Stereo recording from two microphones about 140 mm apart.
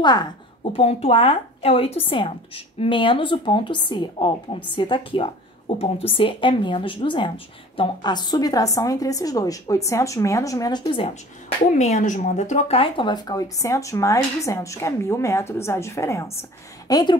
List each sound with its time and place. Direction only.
0.0 s speech: 30° left (ahead or behind)
0.7 s speech: 40° left (ahead or behind)
11.7 s speech: 60° left (ahead or behind); by 16.3 s 20° left (ahead or behind)
16.8 s speech: 30° left (ahead or behind)